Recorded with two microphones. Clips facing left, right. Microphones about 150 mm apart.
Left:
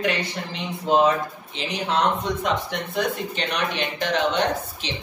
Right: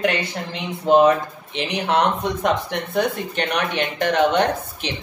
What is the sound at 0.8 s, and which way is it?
Speech, 60° right (ahead or behind).